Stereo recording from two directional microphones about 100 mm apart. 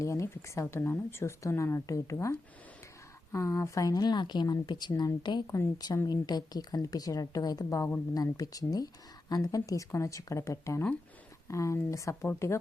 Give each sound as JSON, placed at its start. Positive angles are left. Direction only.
{"t": 0.0, "sound": "speech", "side_deg": 30}
{"t": 5.5, "sound": "a woman's voice", "side_deg": 35}